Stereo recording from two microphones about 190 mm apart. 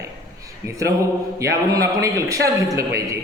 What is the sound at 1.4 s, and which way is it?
A man's voice, 15° right (ahead or behind).